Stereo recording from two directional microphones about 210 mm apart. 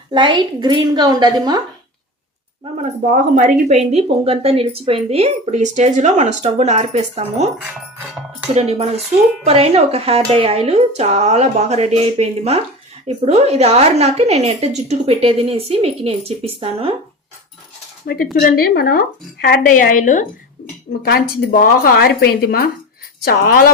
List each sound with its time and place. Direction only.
0.1 s a woman's voice: 20° right (ahead or behind)
2.7 s speech: 35° right (ahead or behind)
8.5 s a woman's voice: 30° right (ahead or behind)
18.0 s a woman's voice: 45° left (ahead or behind)